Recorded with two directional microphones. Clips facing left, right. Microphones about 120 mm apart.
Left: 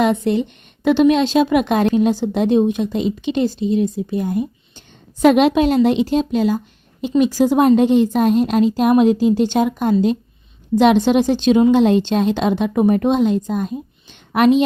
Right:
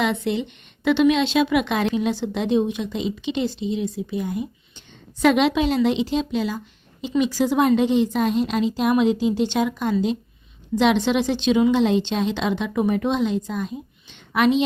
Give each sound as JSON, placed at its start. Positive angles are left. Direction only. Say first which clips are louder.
{"t": 0.0, "sound": "a woman's voice", "louder": "left 6 dB", "side_deg": 45}